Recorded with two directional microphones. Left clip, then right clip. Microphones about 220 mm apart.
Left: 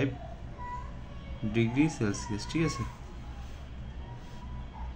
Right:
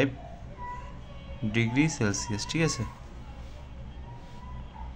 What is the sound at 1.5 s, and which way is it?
Speech, 40° right (ahead or behind).